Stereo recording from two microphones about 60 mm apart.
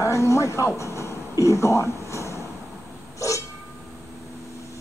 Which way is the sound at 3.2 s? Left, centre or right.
Left.